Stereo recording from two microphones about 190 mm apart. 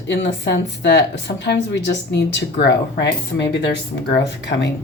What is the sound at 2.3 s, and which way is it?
Speech, 65° left (ahead or behind).